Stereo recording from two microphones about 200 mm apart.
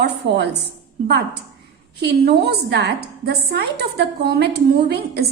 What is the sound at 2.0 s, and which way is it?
A woman's voice, 55° right (ahead or behind).